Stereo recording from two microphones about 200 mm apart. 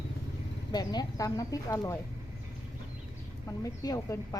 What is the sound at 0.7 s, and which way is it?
Speech, 20° left (ahead or behind).